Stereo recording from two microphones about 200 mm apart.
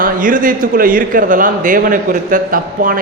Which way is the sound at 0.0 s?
40° right (ahead or behind).